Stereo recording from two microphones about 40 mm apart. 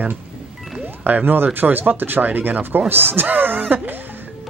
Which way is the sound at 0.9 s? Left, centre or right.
Right.